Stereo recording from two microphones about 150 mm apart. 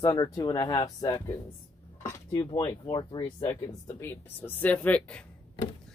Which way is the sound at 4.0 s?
10° left (ahead or behind).